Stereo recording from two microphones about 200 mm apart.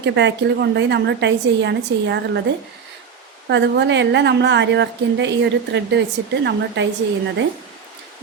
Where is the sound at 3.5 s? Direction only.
60° right (ahead or behind).